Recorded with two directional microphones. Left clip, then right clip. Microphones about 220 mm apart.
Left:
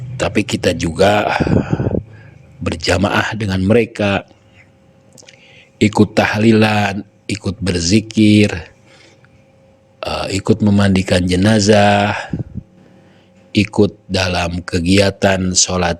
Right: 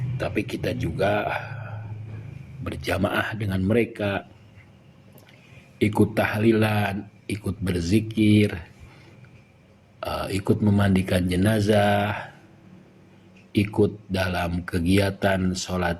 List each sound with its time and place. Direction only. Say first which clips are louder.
0.2 s speech: left 11 dB; 50° left (ahead or behind)
5.8 s speech: left 9 dB; 45° left (ahead or behind)
10.0 s speech: left 8 dB; 45° left (ahead or behind)
13.5 s speech: left 8 dB; 45° left (ahead or behind)